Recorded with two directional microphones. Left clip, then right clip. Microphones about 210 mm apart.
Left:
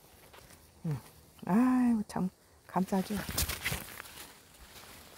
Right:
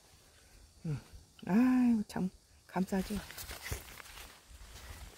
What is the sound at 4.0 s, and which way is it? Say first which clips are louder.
Walk: left 4 dB; 45° left (ahead or behind).